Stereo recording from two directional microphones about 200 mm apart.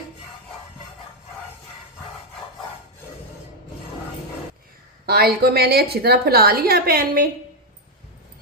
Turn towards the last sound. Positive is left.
turn(degrees=-50)  # may be behind; listen again after turning